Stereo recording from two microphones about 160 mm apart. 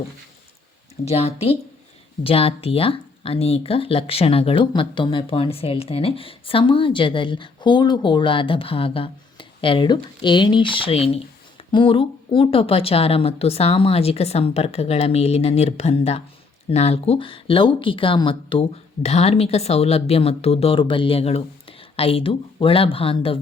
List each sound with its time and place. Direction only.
1.0 s speech: 40° left (ahead or behind)